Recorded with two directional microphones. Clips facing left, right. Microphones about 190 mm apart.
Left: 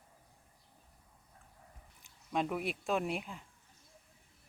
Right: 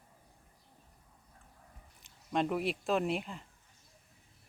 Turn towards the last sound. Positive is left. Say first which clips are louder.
# right 3 dB
turn(degrees=0)  # may be behind; listen again after turning